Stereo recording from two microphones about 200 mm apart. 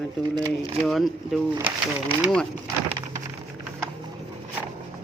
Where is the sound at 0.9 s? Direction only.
Centre (ahead or behind).